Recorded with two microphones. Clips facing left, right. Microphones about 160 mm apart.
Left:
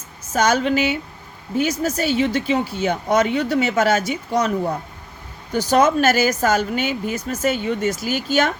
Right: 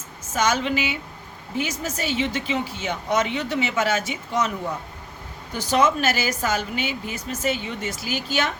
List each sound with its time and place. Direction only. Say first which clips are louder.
0.3 s speech: left 5 dB; 40° left (ahead or behind)